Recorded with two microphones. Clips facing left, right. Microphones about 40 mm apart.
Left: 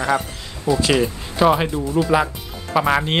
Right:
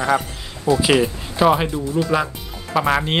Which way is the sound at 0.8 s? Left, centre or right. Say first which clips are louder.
Right 1 dB; centre.